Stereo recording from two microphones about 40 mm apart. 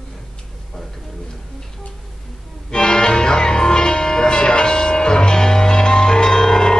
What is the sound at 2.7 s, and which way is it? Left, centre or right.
Music, centre.